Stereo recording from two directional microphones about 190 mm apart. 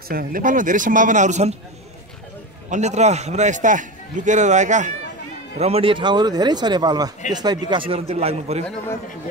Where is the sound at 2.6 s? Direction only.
35° right (ahead or behind).